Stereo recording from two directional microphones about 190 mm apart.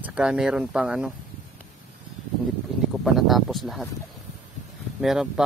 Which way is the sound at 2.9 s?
Centre (ahead or behind).